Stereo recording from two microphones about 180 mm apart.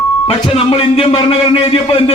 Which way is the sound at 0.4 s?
30° left (ahead or behind).